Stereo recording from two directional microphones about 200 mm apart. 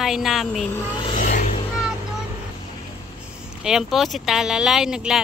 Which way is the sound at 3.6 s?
Centre (ahead or behind).